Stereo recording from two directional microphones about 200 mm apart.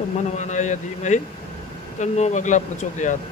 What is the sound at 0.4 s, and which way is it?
Speech, 35° left (ahead or behind).